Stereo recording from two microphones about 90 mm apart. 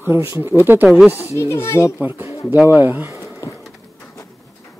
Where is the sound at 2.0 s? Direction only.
25° right (ahead or behind).